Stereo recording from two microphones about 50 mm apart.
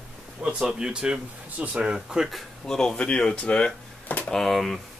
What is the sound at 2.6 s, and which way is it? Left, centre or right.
Speech, centre.